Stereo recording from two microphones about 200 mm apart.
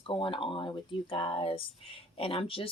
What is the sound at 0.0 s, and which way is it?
Speech, 25° left (ahead or behind).